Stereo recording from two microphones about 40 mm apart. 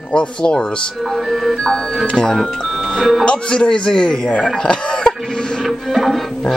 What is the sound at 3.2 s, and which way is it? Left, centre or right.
Speech, left.